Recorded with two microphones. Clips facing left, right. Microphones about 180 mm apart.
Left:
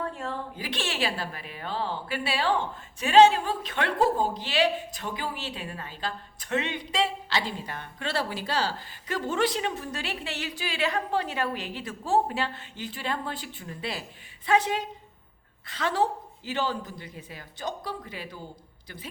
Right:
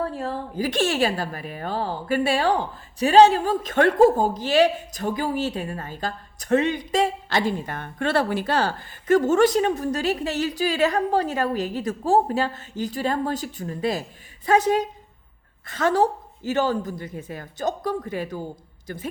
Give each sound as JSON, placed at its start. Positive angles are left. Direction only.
{"t": 0.0, "sound": "a woman's voice", "side_deg": -35}